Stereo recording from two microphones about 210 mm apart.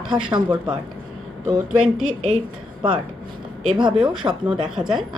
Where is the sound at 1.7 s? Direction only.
90° right.